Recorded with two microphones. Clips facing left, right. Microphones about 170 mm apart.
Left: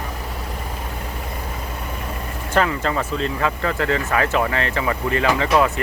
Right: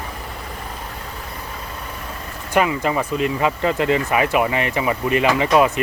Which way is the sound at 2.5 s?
15° right (ahead or behind).